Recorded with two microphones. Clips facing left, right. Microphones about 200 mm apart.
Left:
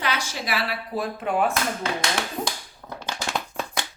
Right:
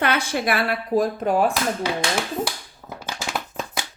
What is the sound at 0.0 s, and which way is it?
A woman's voice, 55° right (ahead or behind).